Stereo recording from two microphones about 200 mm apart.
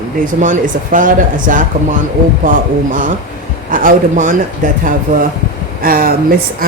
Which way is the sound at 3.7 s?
45° right (ahead or behind).